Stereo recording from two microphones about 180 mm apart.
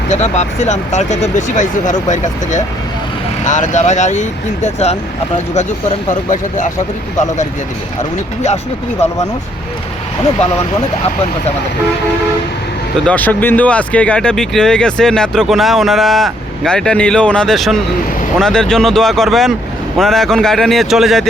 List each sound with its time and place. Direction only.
0.1 s speech: 40° left (ahead or behind)
13.1 s speech: 10° left (ahead or behind)